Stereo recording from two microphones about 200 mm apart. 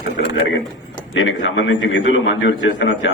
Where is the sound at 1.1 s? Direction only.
75° left (ahead or behind).